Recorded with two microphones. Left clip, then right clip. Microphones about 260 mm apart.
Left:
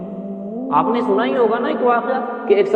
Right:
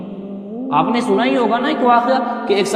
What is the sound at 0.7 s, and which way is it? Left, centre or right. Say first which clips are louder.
A man's voice: right 1 dB; right.